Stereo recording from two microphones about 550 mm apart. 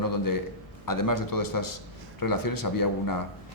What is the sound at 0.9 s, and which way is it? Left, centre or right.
Speech, left.